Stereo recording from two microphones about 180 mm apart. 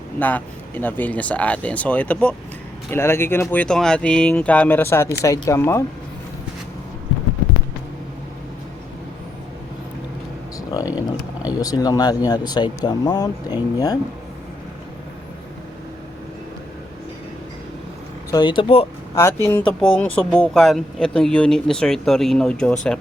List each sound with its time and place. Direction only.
0.2 s speech: 10° left (ahead or behind)
10.8 s a sound: 20° left (ahead or behind)
11.5 s speech: 20° left (ahead or behind)
18.3 s speech: 25° left (ahead or behind)
19.1 s speech: 15° left (ahead or behind)